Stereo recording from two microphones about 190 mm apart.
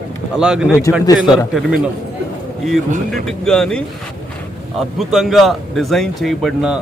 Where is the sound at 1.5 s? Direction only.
5° right (ahead or behind).